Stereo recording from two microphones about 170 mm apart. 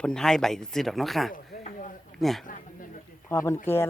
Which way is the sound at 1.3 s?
50° left (ahead or behind).